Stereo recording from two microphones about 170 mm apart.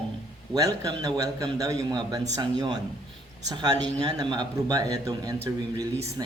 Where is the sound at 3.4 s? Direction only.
25° right (ahead or behind).